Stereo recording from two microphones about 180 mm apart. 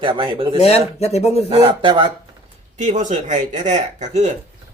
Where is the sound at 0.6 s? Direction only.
35° left (ahead or behind).